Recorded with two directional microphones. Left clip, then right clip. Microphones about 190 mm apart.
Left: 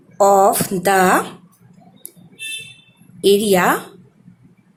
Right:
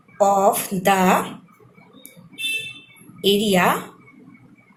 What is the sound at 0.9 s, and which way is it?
Speech, 40° left (ahead or behind).